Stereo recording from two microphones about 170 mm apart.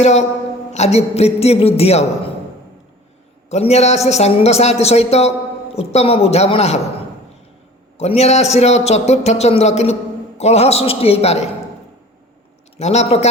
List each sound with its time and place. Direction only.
0.0 s a man's voice: 40° left (ahead or behind)
3.5 s a man's voice: 40° left (ahead or behind)
7.9 s a man's voice: 40° left (ahead or behind)
12.7 s a man's voice: 40° left (ahead or behind)